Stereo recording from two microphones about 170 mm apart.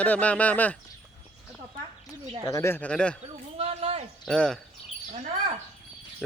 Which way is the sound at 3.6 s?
35° right (ahead or behind).